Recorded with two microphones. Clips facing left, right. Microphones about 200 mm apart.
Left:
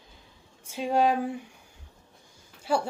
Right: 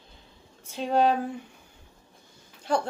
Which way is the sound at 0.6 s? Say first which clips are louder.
Right 1 dB; 10° left (ahead or behind).